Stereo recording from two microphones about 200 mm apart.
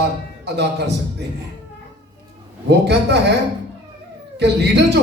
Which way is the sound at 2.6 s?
55° right (ahead or behind).